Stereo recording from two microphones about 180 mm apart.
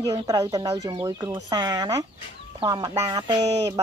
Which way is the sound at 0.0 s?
20° right (ahead or behind).